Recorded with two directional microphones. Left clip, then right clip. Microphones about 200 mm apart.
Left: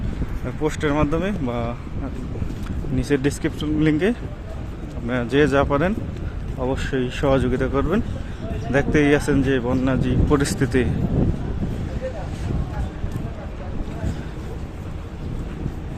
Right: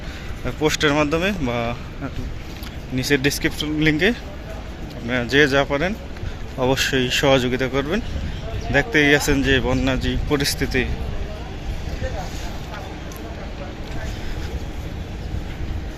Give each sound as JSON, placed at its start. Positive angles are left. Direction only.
{"t": 0.4, "sound": "speech", "side_deg": 5}
{"t": 2.9, "sound": "speech", "side_deg": 15}
{"t": 6.6, "sound": "speech", "side_deg": 5}